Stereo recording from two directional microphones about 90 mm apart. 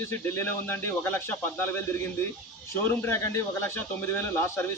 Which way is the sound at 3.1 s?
30° left (ahead or behind).